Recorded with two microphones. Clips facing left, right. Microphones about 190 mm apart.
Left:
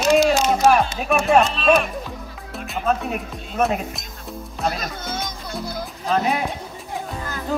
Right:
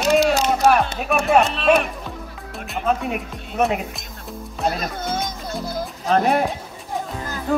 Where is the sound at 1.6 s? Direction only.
65° right (ahead or behind).